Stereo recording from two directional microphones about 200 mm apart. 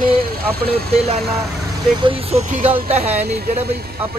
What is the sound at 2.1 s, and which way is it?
Speech, 30° right (ahead or behind).